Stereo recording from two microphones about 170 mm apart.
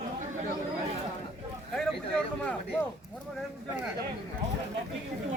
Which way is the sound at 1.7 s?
Centre (ahead or behind).